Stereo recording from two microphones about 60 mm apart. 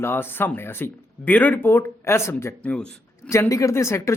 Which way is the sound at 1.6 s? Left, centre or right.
Left.